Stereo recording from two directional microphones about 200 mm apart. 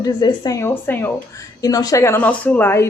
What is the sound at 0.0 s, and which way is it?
Speech, 20° left (ahead or behind).